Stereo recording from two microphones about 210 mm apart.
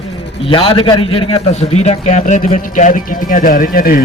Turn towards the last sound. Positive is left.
turn(degrees=45)  # may be behind; listen again after turning